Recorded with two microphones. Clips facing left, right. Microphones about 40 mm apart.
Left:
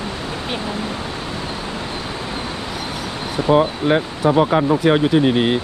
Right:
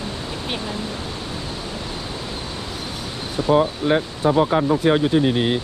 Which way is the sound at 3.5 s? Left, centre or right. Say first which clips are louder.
Left 2 dB; left.